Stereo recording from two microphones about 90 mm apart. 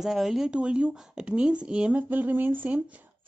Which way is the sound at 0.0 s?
5° right (ahead or behind).